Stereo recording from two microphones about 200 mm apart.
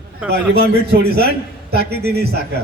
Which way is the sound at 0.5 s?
55° right (ahead or behind).